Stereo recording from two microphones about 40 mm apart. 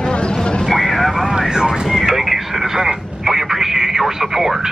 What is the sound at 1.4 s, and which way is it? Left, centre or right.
Vehicle, centre.